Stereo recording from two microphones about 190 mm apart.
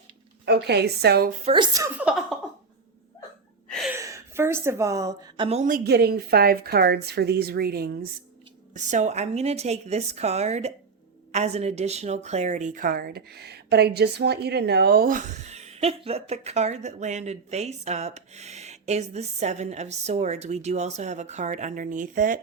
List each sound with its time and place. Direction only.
0.4 s a woman's voice: 60° right (ahead or behind)
1.5 s speech: 20° right (ahead or behind)
2.0 s a sound: 5° right (ahead or behind)
3.7 s a sound: centre (ahead or behind)
3.9 s a woman's voice: 15° right (ahead or behind)
5.5 s a woman's voice: 40° right (ahead or behind)
8.7 s a woman's voice: 40° right (ahead or behind)